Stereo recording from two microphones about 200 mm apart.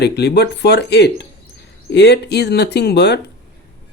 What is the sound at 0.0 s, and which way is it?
Speech, 55° left (ahead or behind).